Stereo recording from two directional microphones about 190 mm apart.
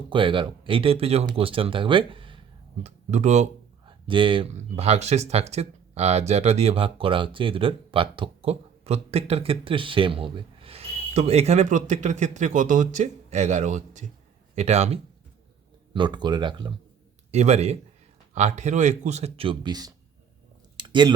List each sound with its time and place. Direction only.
0.1 s speech: 25° right (ahead or behind)
2.8 s speech: 35° right (ahead or behind)
3.8 s speech: 25° right (ahead or behind)
15.9 s speech: 25° right (ahead or behind)
17.3 s speech: 35° right (ahead or behind)
20.7 s chewing: 25° right (ahead or behind)